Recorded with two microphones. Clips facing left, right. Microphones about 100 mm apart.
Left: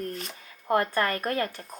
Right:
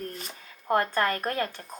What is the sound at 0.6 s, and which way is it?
Speech, 30° right (ahead or behind).